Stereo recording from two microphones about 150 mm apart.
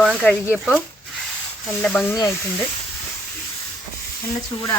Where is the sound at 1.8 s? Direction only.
10° left (ahead or behind).